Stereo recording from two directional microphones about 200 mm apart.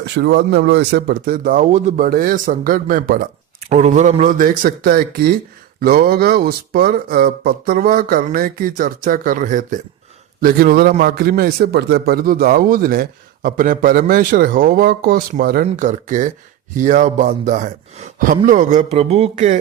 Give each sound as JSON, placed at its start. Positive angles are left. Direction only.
{"t": 0.0, "sound": "a man's voice", "side_deg": -60}
{"t": 15.6, "sound": "a man's voice", "side_deg": -40}